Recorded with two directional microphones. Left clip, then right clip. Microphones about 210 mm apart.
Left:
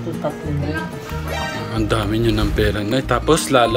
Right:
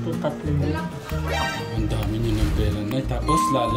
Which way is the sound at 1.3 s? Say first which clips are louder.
Left 2 dB; centre (ahead or behind).